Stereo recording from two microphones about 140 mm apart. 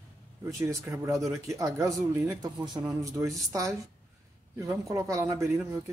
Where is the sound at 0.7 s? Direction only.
20° right (ahead or behind).